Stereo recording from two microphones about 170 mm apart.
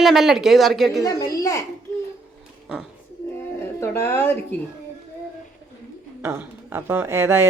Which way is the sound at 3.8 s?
15° left (ahead or behind).